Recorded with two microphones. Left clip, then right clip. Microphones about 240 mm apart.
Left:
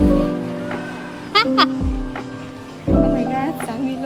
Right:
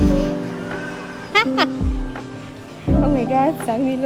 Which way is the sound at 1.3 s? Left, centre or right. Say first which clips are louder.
Left 2 dB; centre.